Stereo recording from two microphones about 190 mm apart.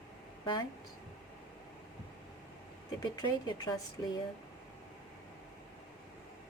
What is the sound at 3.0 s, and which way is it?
Speech, 20° left (ahead or behind).